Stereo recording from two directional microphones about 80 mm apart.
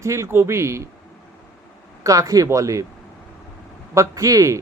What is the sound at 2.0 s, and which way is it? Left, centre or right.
Speech, right.